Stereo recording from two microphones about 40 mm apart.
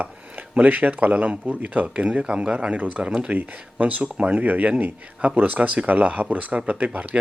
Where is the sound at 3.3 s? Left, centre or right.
Right.